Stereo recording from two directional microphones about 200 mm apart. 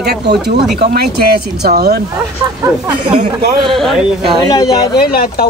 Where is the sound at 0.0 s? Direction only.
55° right (ahead or behind).